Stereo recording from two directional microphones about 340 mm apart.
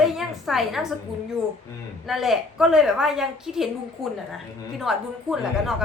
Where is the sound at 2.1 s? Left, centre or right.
Centre.